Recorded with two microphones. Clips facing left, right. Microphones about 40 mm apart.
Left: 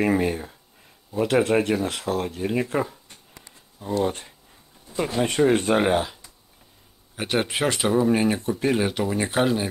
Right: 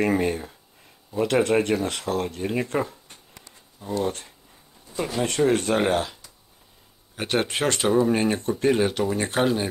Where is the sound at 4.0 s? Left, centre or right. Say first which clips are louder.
Left 2 dB; centre.